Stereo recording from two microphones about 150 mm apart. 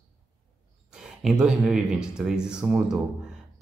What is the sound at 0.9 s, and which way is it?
Speech, 5° right (ahead or behind).